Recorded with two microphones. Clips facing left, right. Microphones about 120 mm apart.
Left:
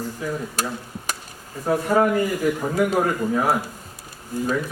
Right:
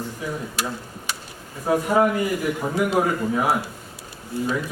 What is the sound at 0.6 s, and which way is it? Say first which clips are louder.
Speech: even; 40° left (ahead or behind).